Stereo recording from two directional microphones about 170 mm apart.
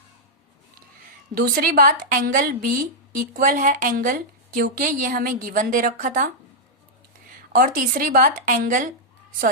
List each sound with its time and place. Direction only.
1.4 s a woman's voice: 55° right (ahead or behind)
7.5 s a woman's voice: 60° right (ahead or behind)